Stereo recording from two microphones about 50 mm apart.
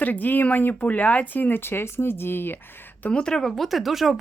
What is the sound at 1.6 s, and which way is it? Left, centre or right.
Speech, left.